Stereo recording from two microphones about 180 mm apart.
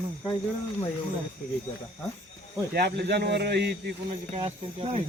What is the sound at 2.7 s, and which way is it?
A man's voice, 65° right (ahead or behind).